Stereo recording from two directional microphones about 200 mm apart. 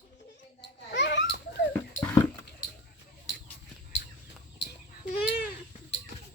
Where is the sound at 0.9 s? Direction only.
60° left (ahead or behind).